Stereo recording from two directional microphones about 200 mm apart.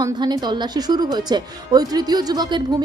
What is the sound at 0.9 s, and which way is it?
Speech, 20° right (ahead or behind).